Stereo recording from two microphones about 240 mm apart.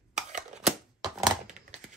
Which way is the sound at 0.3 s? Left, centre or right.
Right.